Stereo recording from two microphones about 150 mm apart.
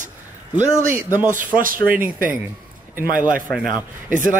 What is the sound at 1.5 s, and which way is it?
Speech, 70° right (ahead or behind).